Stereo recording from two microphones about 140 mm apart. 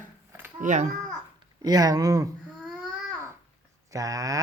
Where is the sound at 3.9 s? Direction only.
25° right (ahead or behind).